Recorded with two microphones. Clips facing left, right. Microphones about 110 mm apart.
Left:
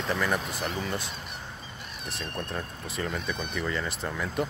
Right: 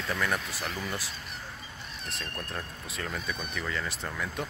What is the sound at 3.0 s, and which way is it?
Speech, centre (ahead or behind).